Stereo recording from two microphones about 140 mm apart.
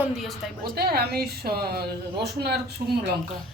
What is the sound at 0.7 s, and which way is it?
A woman's voice, 90° right.